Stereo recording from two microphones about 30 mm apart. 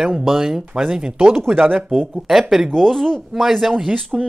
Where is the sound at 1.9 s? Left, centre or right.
Centre.